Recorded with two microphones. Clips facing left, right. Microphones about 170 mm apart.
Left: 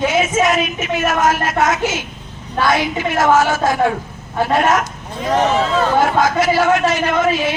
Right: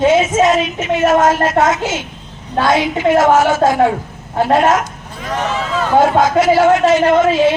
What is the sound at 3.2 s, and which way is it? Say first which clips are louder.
Speech: even; 20° right (ahead or behind).